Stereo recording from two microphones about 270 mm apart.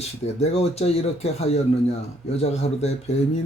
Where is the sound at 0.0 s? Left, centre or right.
Left.